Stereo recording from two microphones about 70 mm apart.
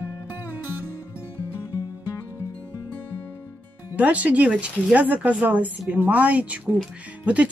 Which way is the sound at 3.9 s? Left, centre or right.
Right.